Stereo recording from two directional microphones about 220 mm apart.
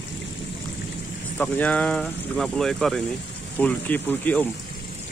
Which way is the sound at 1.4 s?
5° left (ahead or behind).